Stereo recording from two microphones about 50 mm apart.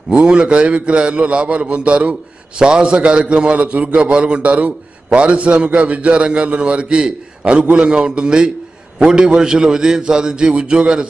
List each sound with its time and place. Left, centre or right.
0.1 s a man's voice: right